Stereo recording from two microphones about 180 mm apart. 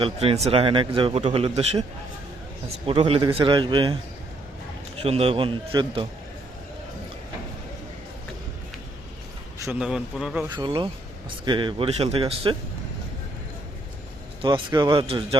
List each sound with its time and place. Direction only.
0.0 s a man's voice: 30° right (ahead or behind)
2.8 s a man's voice: 30° right (ahead or behind)
5.0 s a man's voice: 35° right (ahead or behind)
9.6 s speech: 5° right (ahead or behind)
10.5 s a man's voice: 25° right (ahead or behind)
14.4 s a man's voice: 25° right (ahead or behind)